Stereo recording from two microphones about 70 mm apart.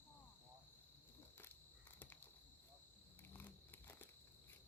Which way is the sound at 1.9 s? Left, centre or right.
Left.